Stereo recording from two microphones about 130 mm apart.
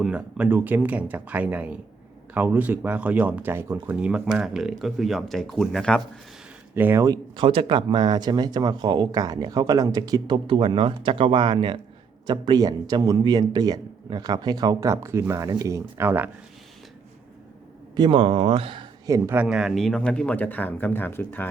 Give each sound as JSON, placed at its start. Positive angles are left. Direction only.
{"t": 0.0, "sound": "speech", "side_deg": -10}
{"t": 6.7, "sound": "speech", "side_deg": -15}
{"t": 7.0, "sound": "a man's voice", "side_deg": -35}
{"t": 17.9, "sound": "speech", "side_deg": -40}
{"t": 19.0, "sound": "a man's voice", "side_deg": -25}
{"t": 19.4, "sound": "speech", "side_deg": -5}